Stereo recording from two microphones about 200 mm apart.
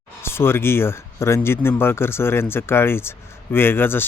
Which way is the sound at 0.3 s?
10° left (ahead or behind).